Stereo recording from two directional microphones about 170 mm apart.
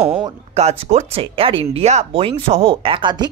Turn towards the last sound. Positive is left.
turn(degrees=-30)  # may be behind; listen again after turning